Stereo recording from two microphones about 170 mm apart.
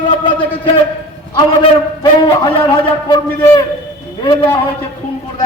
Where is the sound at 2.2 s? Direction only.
25° left (ahead or behind).